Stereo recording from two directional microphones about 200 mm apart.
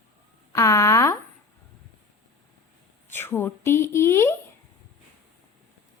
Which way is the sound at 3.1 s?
10° left (ahead or behind).